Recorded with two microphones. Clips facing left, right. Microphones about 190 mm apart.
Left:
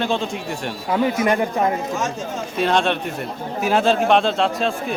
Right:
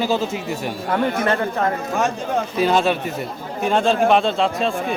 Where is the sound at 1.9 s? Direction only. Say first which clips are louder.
Right 4 dB; 60° right (ahead or behind).